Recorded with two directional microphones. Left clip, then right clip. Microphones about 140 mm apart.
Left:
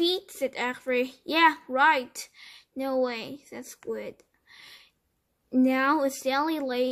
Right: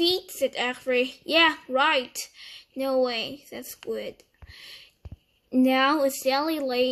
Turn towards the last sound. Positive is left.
turn(degrees=30)  # may be behind; listen again after turning